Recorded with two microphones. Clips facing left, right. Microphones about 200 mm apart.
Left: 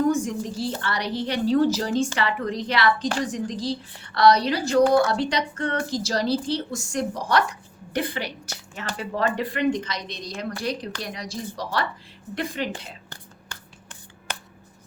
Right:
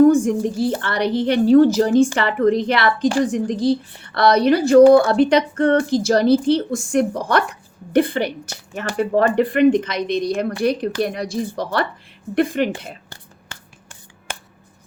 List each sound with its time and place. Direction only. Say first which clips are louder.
0.2 s a woman's voice: right 8 dB; 55° right (ahead or behind)